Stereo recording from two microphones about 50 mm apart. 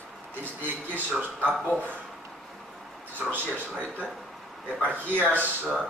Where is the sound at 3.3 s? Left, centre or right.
Right.